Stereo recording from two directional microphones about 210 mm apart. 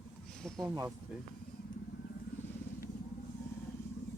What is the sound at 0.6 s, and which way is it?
Speech, 10° right (ahead or behind).